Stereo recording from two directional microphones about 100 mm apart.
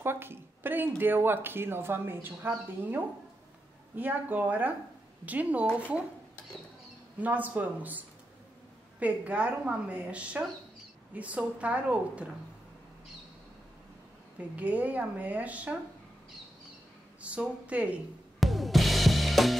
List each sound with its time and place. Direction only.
0.0 s a woman's voice: 25° right (ahead or behind)
7.2 s a woman's voice: 15° right (ahead or behind)
9.0 s a woman's voice: 15° right (ahead or behind)
14.5 s a woman's voice: 15° right (ahead or behind)
17.2 s a woman's voice: 15° right (ahead or behind)
18.4 s drum kit: centre (ahead or behind)